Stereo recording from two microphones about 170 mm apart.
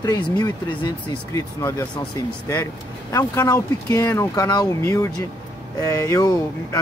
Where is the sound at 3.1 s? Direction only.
20° left (ahead or behind).